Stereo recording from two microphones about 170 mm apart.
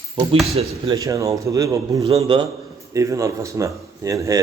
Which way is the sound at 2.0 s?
30° right (ahead or behind).